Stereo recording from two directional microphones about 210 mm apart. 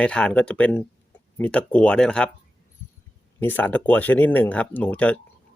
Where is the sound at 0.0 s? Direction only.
5° left (ahead or behind).